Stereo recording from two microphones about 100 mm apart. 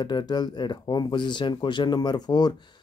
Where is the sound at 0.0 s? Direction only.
45° left (ahead or behind).